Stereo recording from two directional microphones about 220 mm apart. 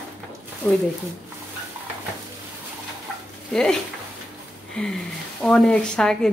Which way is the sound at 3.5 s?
5° left (ahead or behind).